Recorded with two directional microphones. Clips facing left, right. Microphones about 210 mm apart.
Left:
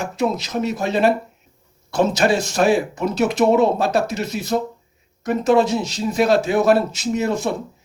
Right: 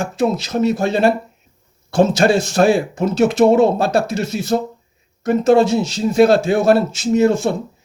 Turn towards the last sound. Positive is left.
turn(degrees=-25)  # may be behind; listen again after turning